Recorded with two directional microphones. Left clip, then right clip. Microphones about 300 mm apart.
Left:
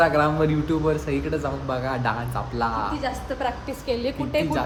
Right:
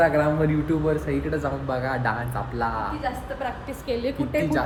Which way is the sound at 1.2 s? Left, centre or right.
Centre.